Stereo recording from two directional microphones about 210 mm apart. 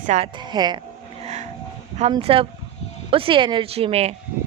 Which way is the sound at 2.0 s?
25° right (ahead or behind).